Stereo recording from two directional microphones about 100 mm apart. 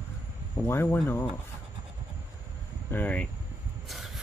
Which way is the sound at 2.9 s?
15° left (ahead or behind).